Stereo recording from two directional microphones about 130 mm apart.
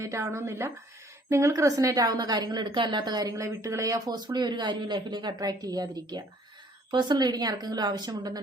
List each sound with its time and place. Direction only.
0.0 s a woman's voice: 25° right (ahead or behind)